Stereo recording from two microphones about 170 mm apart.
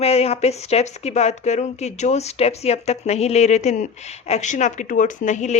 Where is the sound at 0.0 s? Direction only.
35° left (ahead or behind).